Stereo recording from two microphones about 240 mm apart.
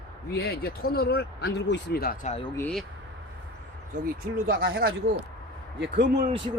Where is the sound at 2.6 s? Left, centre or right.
Centre.